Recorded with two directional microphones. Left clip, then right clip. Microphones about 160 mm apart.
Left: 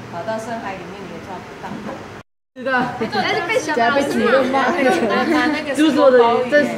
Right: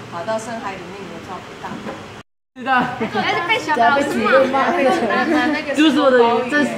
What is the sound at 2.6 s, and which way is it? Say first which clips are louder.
A woman's voice: right 1 dB; 55° right (ahead or behind).